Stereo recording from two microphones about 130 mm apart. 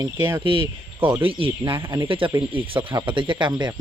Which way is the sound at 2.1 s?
40° right (ahead or behind).